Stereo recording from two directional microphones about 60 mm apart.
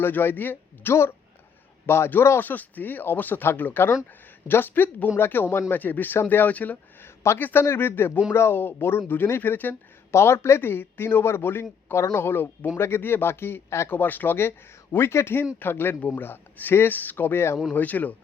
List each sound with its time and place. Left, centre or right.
0.0 s a man's voice: left
2.4 s a man's voice: left
5.8 s a man's voice: left
7.0 s a man's voice: left
10.1 s a man's voice: left
13.9 s a man's voice: left
17.7 s speech: left